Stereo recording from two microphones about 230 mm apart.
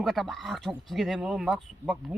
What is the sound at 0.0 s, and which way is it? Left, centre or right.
Speech, centre.